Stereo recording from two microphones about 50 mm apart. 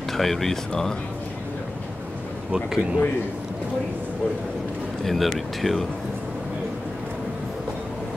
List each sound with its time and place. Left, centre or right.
0.1 s speech: centre
2.5 s speech: centre
5.0 s speech: centre